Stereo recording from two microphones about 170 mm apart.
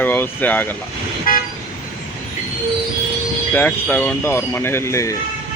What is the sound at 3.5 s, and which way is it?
Speech, 10° left (ahead or behind).